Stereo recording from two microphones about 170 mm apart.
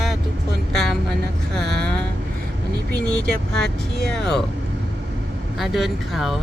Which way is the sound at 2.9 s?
5° left (ahead or behind).